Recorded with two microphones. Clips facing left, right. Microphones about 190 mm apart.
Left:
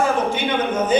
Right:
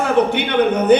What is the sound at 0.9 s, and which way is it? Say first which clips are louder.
Speech: right 5 dB; 65° right (ahead or behind).